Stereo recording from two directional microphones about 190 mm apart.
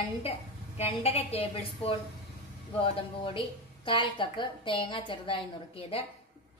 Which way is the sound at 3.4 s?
25° left (ahead or behind).